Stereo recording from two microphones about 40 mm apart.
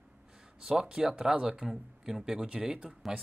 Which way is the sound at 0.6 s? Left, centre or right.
Centre.